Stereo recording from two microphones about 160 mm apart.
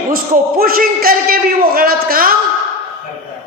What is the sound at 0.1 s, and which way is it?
Speech, 65° right (ahead or behind).